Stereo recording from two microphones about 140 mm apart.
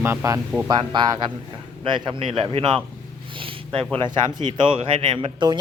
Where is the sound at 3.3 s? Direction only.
40° right (ahead or behind).